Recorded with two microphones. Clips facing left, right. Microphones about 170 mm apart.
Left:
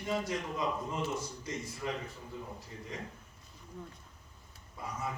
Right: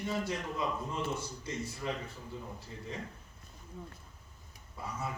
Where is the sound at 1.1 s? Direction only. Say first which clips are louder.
Even; 30° right (ahead or behind).